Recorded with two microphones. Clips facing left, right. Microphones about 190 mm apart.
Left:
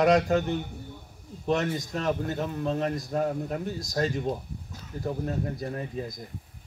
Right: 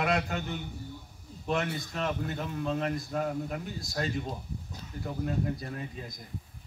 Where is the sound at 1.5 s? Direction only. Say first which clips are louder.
Left 4 dB; 40° left (ahead or behind).